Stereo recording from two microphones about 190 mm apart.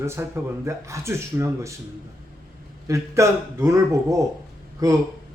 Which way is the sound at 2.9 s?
15° right (ahead or behind).